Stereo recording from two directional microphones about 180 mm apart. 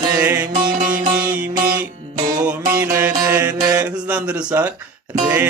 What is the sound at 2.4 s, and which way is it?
Mantra, 10° right (ahead or behind).